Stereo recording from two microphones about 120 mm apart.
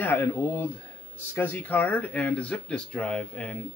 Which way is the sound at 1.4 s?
15° left (ahead or behind).